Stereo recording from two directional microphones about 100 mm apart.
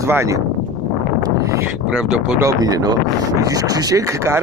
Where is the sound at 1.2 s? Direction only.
35° right (ahead or behind).